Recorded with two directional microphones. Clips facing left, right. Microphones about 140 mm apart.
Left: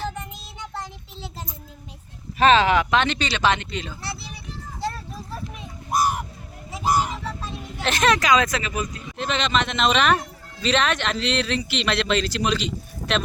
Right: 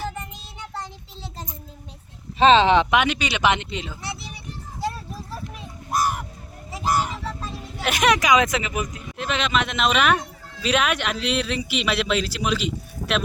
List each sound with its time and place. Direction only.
0.0 s child singing: 5° right (ahead or behind)
0.7 s a sound: centre (ahead or behind)
2.4 s speech: 25° right (ahead or behind)
2.9 s a man's voice: 10° right (ahead or behind)
4.8 s a sound: 10° right (ahead or behind)
7.3 s speech: centre (ahead or behind); by 8.9 s 20° right (ahead or behind)
9.1 s a man's voice: 5° right (ahead or behind)